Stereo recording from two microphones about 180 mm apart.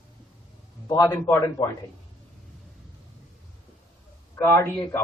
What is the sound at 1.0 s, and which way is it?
Speech, 15° left (ahead or behind).